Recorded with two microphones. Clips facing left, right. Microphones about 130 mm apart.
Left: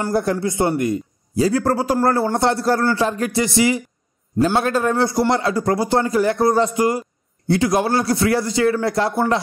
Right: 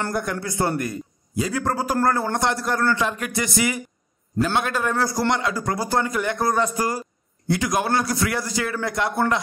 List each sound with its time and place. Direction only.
0.1 s a man's voice: 30° left (ahead or behind)